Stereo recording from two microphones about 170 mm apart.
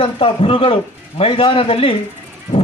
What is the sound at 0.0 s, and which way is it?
A man's voice, 35° left (ahead or behind).